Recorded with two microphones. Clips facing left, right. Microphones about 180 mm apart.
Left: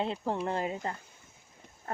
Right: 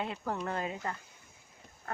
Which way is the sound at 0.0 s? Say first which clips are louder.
Left 4 dB; 25° left (ahead or behind).